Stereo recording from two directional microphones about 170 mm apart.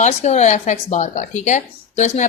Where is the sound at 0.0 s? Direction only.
40° left (ahead or behind).